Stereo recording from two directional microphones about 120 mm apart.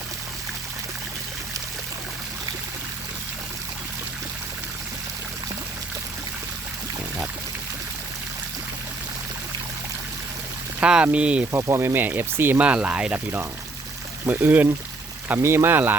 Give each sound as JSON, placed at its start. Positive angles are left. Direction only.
{"t": 10.8, "sound": "speech", "side_deg": -10}
{"t": 11.5, "sound": "speech", "side_deg": -25}